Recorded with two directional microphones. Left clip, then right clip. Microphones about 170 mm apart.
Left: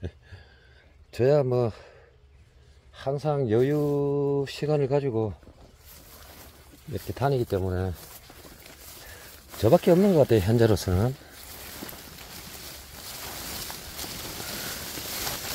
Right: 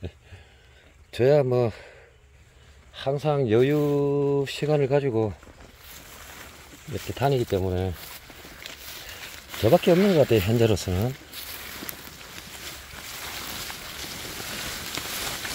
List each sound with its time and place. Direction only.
1.1 s speech: 10° right (ahead or behind)
2.9 s speech: 15° right (ahead or behind)
6.9 s speech: 5° right (ahead or behind)
9.5 s speech: 5° left (ahead or behind)